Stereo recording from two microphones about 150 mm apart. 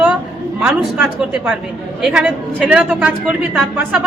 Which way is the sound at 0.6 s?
5° right (ahead or behind).